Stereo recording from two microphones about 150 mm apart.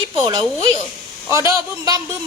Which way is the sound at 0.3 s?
35° right (ahead or behind).